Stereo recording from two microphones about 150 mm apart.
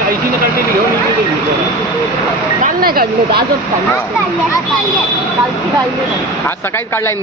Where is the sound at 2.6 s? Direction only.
80° right.